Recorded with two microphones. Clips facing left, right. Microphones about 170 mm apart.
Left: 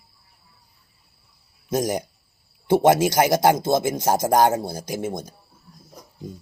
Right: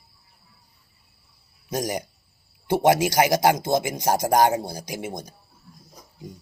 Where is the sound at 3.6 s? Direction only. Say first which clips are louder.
Left 3 dB; 15° right (ahead or behind).